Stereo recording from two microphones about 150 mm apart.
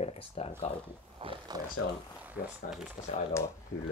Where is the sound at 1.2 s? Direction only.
35° right (ahead or behind).